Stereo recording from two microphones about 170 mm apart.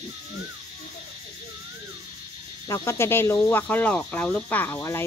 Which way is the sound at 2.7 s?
15° left (ahead or behind).